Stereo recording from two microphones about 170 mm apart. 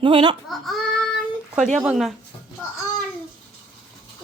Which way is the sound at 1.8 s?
5° right (ahead or behind).